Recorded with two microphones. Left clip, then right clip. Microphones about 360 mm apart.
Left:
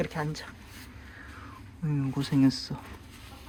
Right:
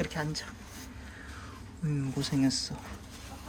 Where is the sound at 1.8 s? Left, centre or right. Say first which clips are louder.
Left 2 dB; centre.